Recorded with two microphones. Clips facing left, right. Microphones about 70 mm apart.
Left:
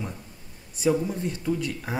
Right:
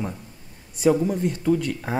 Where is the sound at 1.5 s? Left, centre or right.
Right.